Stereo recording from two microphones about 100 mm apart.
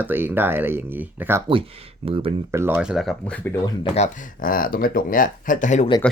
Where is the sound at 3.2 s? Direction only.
15° left (ahead or behind).